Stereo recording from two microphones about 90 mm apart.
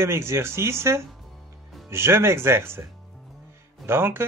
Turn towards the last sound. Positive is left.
turn(degrees=-25)  # may be behind; listen again after turning